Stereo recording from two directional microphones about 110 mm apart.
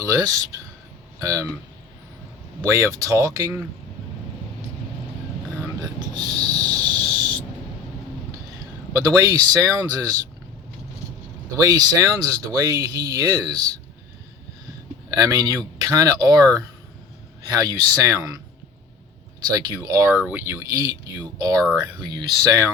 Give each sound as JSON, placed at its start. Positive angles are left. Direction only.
{"t": 0.0, "sound": "speech", "side_deg": -30}
{"t": 2.6, "sound": "speech", "side_deg": -25}
{"t": 6.1, "sound": "a sound", "side_deg": -40}
{"t": 8.9, "sound": "speech", "side_deg": -30}
{"t": 11.5, "sound": "speech", "side_deg": -35}
{"t": 15.1, "sound": "speech", "side_deg": -30}
{"t": 19.5, "sound": "speech", "side_deg": -35}